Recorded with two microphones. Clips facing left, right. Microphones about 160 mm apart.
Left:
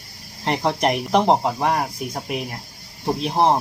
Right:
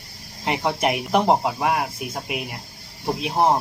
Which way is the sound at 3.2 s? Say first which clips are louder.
Left 1 dB; 5° right (ahead or behind).